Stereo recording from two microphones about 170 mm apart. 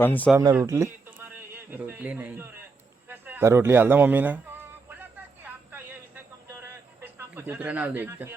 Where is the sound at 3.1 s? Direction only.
10° right (ahead or behind).